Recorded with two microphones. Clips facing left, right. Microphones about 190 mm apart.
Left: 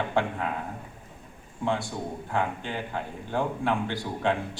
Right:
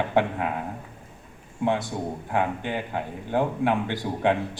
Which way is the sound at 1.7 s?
20° right (ahead or behind).